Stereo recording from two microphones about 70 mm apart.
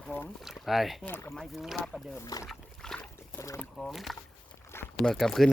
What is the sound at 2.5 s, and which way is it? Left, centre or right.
Dog, centre.